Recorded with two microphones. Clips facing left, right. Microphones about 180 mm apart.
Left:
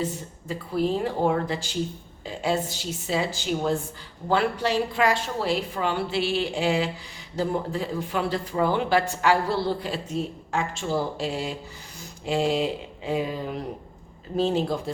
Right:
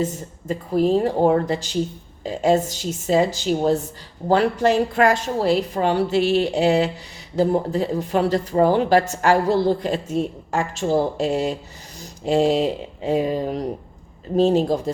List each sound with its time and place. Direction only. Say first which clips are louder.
0.0 s speech: right 5 dB; 45° right (ahead or behind)